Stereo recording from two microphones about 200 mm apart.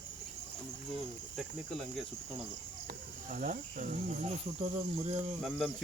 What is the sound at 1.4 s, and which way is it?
Cricket, centre (ahead or behind).